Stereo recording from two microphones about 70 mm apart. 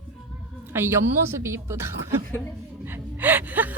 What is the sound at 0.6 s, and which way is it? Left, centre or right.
A woman's voice, right.